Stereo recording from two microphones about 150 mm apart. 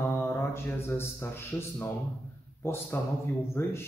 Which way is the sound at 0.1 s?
15° left (ahead or behind).